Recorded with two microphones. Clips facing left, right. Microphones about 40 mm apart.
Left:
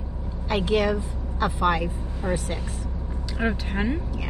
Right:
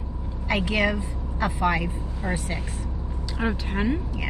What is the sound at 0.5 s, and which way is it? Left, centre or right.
A woman's voice, right.